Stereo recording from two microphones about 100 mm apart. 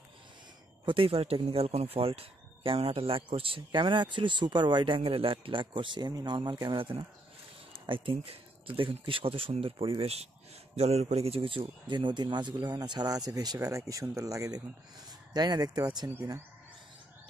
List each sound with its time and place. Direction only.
0.8 s speech: 65° right (ahead or behind)
10.8 s speech: 90° right; by 15.9 s 40° right (ahead or behind)